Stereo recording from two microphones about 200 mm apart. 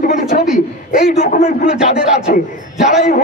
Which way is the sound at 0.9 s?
45° left (ahead or behind).